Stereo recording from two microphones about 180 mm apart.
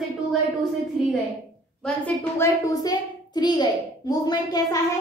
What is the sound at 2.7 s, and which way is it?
A child's voice, 20° left (ahead or behind).